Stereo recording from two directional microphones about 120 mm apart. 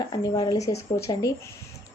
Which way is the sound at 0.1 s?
30° left (ahead or behind).